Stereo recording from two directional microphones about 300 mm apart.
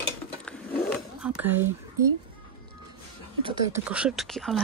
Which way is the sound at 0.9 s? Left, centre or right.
Centre.